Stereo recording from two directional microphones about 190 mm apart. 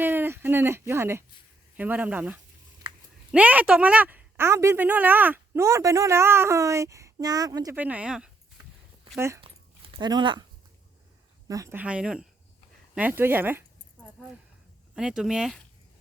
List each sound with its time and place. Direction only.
0.0 s a woman's voice: 10° right (ahead or behind)
7.8 s a woman's voice: 10° right (ahead or behind); by 10.4 s 25° right (ahead or behind)
11.4 s a woman's voice: 15° right (ahead or behind)
14.9 s speech: 5° right (ahead or behind)